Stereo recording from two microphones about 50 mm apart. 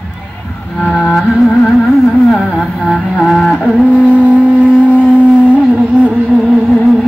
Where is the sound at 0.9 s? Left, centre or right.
Centre.